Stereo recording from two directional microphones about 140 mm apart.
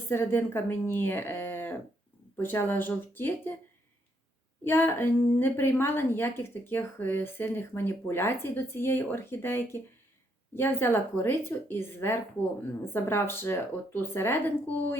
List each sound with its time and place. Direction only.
0.1 s a woman's voice: 15° left (ahead or behind)
4.6 s a woman's voice: 15° left (ahead or behind)